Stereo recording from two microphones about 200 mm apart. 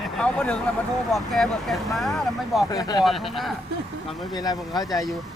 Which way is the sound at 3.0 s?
Centre (ahead or behind).